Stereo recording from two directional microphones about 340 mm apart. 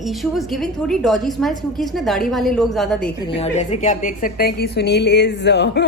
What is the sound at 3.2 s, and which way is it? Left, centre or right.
A woman's voice, centre.